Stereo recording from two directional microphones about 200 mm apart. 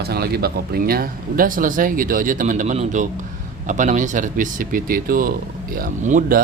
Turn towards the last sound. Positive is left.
turn(degrees=-45)  # may be behind; listen again after turning